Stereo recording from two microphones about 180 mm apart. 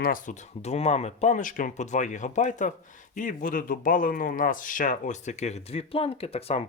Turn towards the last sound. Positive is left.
turn(degrees=35)  # may be behind; listen again after turning